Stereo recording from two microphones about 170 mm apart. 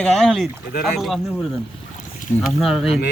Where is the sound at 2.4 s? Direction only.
Centre (ahead or behind).